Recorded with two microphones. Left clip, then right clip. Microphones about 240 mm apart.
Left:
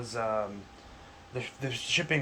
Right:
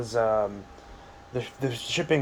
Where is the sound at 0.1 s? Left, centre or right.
Right.